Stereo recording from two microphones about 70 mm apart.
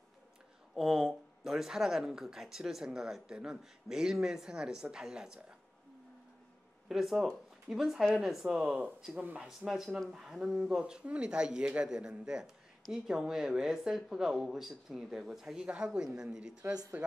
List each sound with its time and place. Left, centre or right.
0.7 s speech: centre
6.9 s speech: centre
9.1 s speech: right
9.7 s speech: centre
16.9 s speech: right